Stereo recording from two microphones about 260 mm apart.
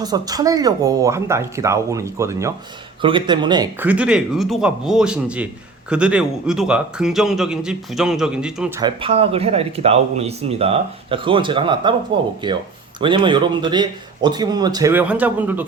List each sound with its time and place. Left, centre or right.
0.0 s a man's voice: centre
8.8 s a man's voice: right